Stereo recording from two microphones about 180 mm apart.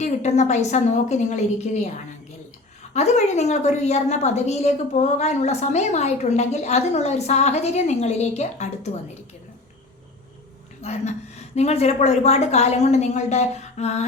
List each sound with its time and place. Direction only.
0.0 s a woman's voice: 40° left (ahead or behind)
2.9 s a woman's voice: 40° left (ahead or behind)
10.8 s a woman's voice: 35° left (ahead or behind)